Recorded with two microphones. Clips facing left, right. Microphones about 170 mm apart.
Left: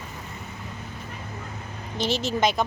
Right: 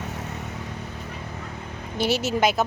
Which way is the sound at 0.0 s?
75° right (ahead or behind).